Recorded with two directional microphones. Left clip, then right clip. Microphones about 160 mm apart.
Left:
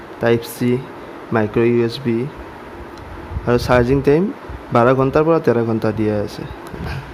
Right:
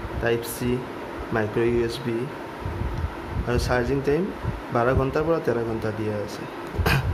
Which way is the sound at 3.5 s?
50° left (ahead or behind).